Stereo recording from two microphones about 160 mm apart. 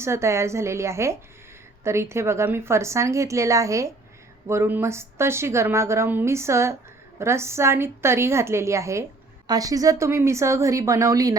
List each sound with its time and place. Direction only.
0.0 s a woman's voice: 15° right (ahead or behind)